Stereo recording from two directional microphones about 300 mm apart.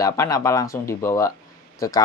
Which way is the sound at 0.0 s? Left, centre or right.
Centre.